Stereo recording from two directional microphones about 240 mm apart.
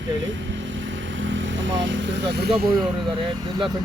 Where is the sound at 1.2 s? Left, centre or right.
Right.